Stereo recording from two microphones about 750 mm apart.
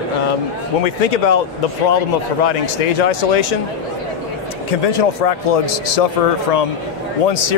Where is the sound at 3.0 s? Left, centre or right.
Left.